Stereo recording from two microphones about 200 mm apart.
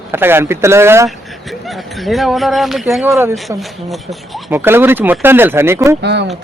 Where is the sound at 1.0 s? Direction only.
Centre (ahead or behind).